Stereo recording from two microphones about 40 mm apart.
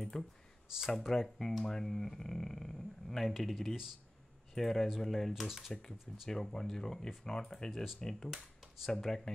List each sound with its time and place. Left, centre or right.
0.1 s speech: centre
0.7 s speech: centre
1.1 s speech: centre
5.7 s speech: centre